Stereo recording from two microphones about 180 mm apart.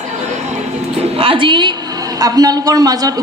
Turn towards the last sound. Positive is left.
turn(degrees=-20)  # may be behind; listen again after turning